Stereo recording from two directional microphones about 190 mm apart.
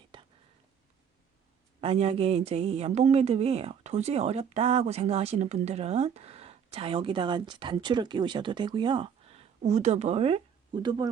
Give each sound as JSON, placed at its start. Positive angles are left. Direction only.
{"t": 0.1, "sound": "whispering", "side_deg": -25}
{"t": 1.8, "sound": "speech", "side_deg": -30}